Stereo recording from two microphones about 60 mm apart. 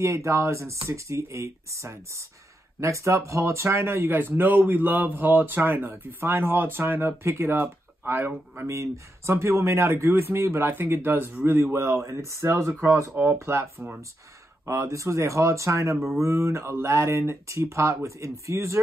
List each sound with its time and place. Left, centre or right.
0.0 s speech: right
8.6 s speech: right
13.1 s speech: right